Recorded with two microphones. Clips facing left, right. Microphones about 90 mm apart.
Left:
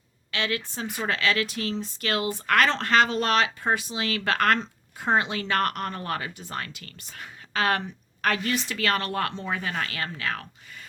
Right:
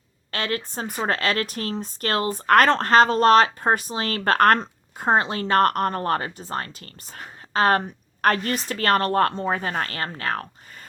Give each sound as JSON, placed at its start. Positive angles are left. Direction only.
{"t": 0.3, "sound": "speech", "side_deg": -45}